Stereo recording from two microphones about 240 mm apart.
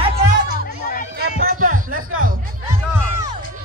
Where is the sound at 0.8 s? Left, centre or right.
Left.